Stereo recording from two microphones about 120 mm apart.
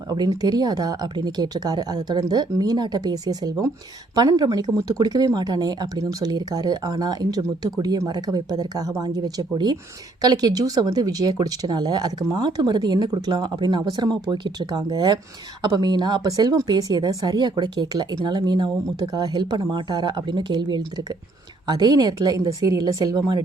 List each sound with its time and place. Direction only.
0.1 s speech: 35° right (ahead or behind)